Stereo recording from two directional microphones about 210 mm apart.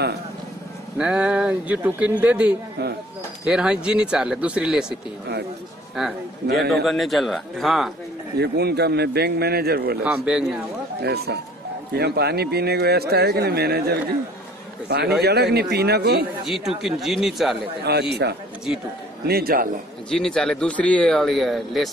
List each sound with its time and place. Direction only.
0.9 s speech: 5° right (ahead or behind)
6.4 s a man's voice: 50° right (ahead or behind)
6.7 s speech: centre (ahead or behind)
8.4 s a man's voice: 50° right (ahead or behind)
10.0 s speech: 5° right (ahead or behind)
11.0 s a man's voice: 50° right (ahead or behind)
16.6 s speech: centre (ahead or behind)
17.9 s a man's voice: 50° right (ahead or behind)
19.2 s a man's voice: 45° right (ahead or behind)
20.1 s speech: 5° left (ahead or behind)